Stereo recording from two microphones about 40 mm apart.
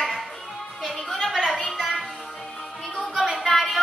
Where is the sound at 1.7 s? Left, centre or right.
Centre.